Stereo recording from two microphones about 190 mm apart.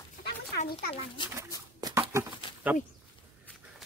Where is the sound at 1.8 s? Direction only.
20° right (ahead or behind).